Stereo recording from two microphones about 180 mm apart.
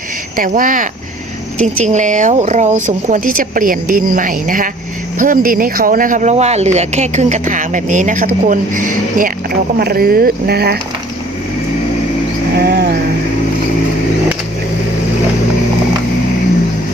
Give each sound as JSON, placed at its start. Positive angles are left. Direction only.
{"t": 0.3, "sound": "speech", "side_deg": -50}
{"t": 12.5, "sound": "speech", "side_deg": -65}